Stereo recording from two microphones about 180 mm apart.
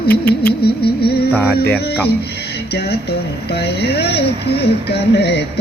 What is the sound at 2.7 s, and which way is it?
Speech, 65° left (ahead or behind).